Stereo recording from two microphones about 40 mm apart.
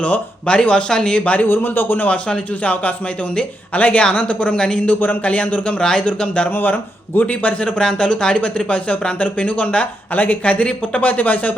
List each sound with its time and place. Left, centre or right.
0.0 s speech: left
1.2 s speech: left
1.5 s speech: left
2.0 s speech: left
4.9 s speech: left
5.8 s speech: left
7.1 s a man's voice: left
7.8 s speech: centre; by 11.5 s left